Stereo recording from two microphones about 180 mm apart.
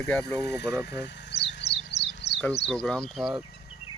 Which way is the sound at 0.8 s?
70° left (ahead or behind).